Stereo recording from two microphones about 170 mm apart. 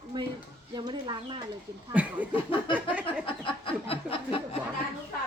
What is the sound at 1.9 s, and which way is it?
Speech, 10° right (ahead or behind).